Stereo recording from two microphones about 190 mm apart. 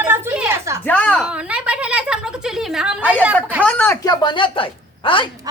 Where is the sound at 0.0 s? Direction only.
10° right (ahead or behind).